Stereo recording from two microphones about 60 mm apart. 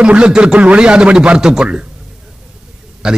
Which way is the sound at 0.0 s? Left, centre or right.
Centre.